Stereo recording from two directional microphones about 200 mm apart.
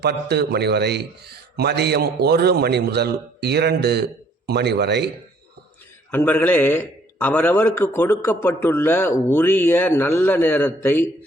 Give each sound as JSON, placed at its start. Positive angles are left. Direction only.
{"t": 0.0, "sound": "a man's voice", "side_deg": -55}
{"t": 6.1, "sound": "a man's voice", "side_deg": 10}